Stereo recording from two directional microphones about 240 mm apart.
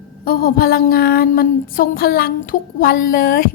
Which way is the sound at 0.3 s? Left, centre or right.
Left.